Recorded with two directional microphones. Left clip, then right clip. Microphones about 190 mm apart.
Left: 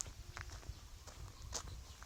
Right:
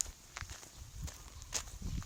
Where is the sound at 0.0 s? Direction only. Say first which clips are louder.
Right 6 dB; 50° right (ahead or behind).